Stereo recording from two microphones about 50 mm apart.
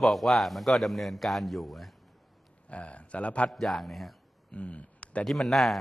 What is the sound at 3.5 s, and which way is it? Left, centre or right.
Speech, centre.